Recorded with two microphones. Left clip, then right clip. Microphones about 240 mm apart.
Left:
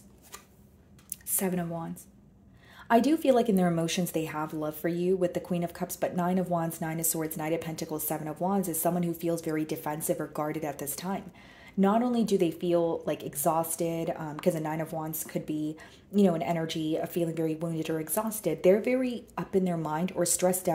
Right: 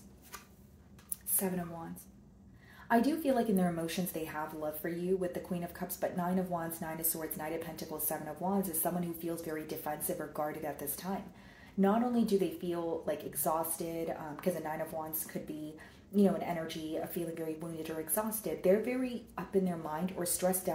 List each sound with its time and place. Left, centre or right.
1.3 s speech: left
2.9 s speech: left